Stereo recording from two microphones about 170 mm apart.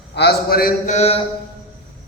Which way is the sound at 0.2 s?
65° left (ahead or behind).